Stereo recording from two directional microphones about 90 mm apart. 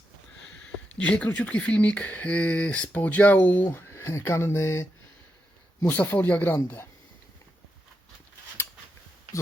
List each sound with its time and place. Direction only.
0.9 s speech: 15° left (ahead or behind); by 4.9 s 30° left (ahead or behind)
5.8 s speech: 20° left (ahead or behind)